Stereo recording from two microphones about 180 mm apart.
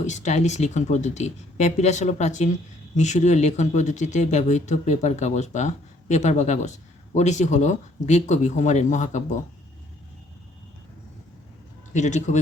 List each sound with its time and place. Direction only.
0.0 s speech: 40° left (ahead or behind)
11.9 s speech: 40° left (ahead or behind)